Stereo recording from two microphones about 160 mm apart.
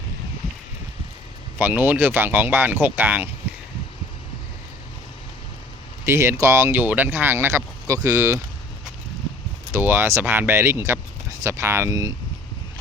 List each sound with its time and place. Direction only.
1.5 s speech: 10° right (ahead or behind)
6.1 s speech: 15° right (ahead or behind)
9.7 s speech: 15° right (ahead or behind)